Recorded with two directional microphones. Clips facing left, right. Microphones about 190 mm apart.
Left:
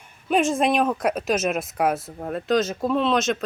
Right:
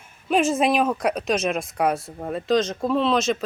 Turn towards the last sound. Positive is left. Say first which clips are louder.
# right 1 dB
turn(degrees=0)  # may be behind; listen again after turning